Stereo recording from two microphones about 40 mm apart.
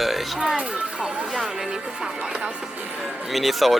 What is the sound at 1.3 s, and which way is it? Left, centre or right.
Music, centre.